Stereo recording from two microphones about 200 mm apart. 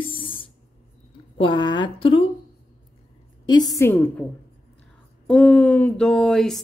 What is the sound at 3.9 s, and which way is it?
Speech, 5° left (ahead or behind).